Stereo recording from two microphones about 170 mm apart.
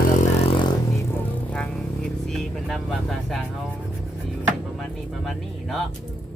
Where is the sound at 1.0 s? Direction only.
10° left (ahead or behind).